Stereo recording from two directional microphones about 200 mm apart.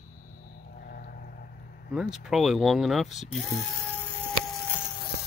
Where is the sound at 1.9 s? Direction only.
Centre (ahead or behind).